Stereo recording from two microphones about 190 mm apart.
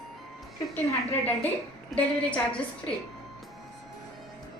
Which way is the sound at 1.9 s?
5° left (ahead or behind).